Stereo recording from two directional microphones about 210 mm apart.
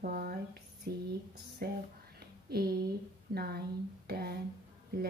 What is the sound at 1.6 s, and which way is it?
Speech, 45° right (ahead or behind).